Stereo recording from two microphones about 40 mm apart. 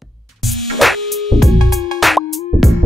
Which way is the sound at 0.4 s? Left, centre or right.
Centre.